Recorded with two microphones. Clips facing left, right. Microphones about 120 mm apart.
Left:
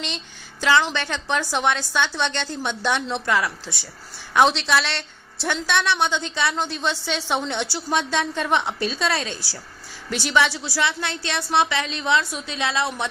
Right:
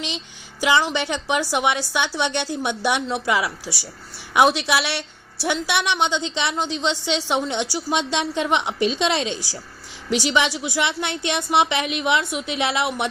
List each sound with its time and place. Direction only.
0.6 s a woman's voice: 15° right (ahead or behind)